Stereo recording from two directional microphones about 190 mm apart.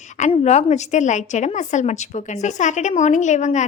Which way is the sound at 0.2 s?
35° left (ahead or behind).